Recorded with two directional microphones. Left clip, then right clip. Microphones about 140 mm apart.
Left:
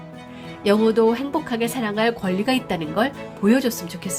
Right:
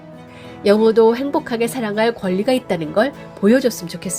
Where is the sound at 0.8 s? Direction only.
40° right (ahead or behind).